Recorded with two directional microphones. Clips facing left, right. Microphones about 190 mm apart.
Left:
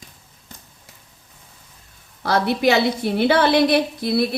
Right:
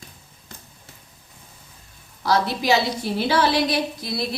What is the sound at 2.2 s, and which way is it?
A woman's voice, 60° left (ahead or behind).